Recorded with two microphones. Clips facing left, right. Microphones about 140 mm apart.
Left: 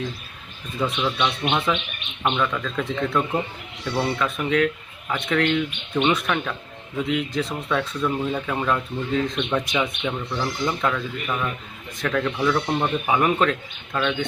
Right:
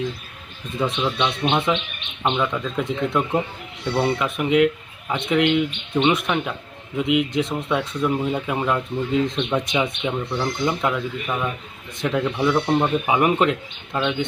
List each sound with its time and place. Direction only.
0.8 s speech: 20° right (ahead or behind)